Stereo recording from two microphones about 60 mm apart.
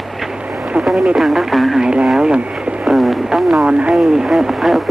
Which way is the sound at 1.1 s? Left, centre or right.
Centre.